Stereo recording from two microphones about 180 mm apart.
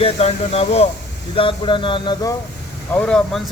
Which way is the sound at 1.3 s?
30° left (ahead or behind).